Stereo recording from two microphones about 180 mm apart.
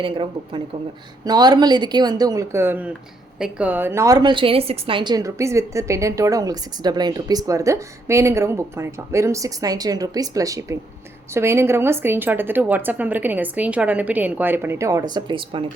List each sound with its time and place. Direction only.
0.0 s a woman's voice: 25° right (ahead or behind)